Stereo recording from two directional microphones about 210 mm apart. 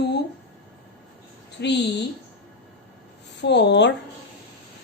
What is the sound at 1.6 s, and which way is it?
Speech, 55° left (ahead or behind).